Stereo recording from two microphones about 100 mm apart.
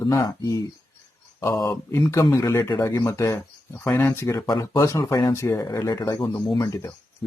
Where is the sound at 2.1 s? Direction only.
30° left (ahead or behind).